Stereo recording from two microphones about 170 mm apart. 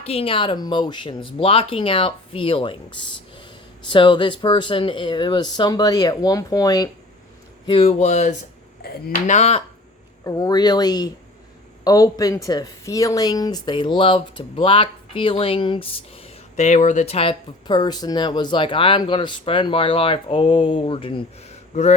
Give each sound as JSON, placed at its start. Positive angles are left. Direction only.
{"t": 0.0, "sound": "a woman's voice", "side_deg": 35}
{"t": 7.7, "sound": "speech", "side_deg": 35}
{"t": 10.2, "sound": "a woman's voice", "side_deg": 20}
{"t": 16.6, "sound": "speech", "side_deg": 45}